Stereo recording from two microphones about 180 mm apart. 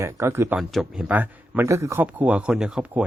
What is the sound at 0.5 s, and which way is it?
A man's voice, centre (ahead or behind).